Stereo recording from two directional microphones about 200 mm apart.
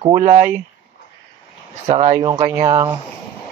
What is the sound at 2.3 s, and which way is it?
Speech, 20° right (ahead or behind).